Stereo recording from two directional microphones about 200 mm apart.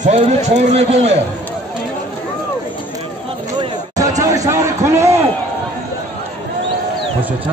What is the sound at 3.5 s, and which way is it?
Chatter, 20° right (ahead or behind).